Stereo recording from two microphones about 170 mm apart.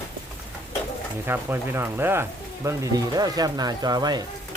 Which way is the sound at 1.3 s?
10° right (ahead or behind).